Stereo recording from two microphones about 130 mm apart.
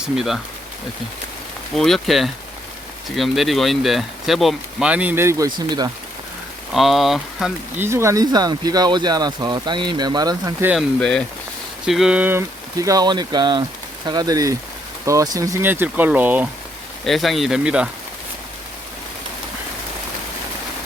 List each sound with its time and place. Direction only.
0.0 s speech: 5° right (ahead or behind)
1.7 s speech: centre (ahead or behind); by 5.5 s 20° right (ahead or behind)
5.5 s speech: 35° right (ahead or behind)
6.7 s speech: centre (ahead or behind)
7.8 s speech: 20° right (ahead or behind)
10.8 s speech: 5° left (ahead or behind); by 16.5 s 10° right (ahead or behind)
17.1 s speech: centre (ahead or behind)